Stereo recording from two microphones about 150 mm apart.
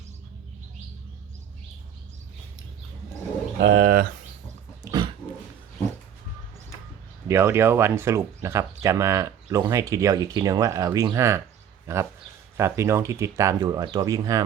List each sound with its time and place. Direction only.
3.6 s speech: 80° right
4.9 s a sound: 30° right (ahead or behind)
7.3 s speech: 15° right (ahead or behind)